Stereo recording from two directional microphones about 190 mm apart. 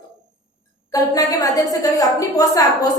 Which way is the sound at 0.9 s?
20° left (ahead or behind).